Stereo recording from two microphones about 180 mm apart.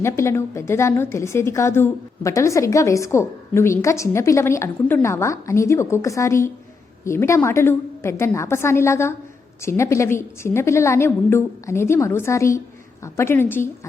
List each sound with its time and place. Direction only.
0.0 s a woman's voice: 15° left (ahead or behind)